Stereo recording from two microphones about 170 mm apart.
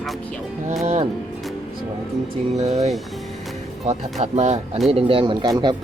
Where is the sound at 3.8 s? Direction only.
40° right (ahead or behind).